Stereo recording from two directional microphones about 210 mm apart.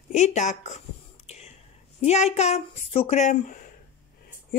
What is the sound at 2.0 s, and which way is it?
A woman's voice, 30° left (ahead or behind).